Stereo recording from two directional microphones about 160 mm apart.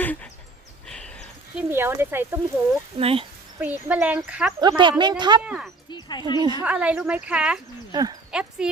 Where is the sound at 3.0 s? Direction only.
35° right (ahead or behind).